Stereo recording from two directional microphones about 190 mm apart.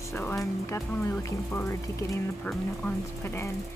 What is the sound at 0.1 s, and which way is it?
Speech, 10° left (ahead or behind).